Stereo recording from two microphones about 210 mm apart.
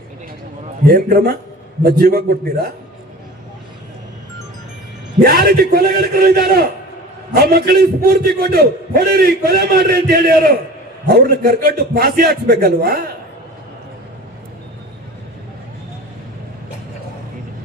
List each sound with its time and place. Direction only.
0.9 s a man's voice: 50° right (ahead or behind)
5.2 s a man's voice: 45° right (ahead or behind)